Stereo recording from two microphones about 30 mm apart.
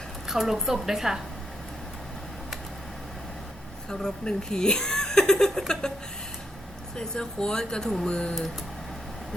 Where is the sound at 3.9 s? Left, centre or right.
Left.